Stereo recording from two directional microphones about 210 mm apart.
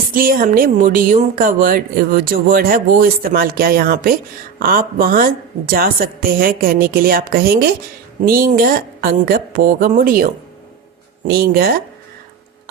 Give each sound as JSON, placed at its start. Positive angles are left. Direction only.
{"t": 0.1, "sound": "speech", "side_deg": -40}
{"t": 11.3, "sound": "speech", "side_deg": -45}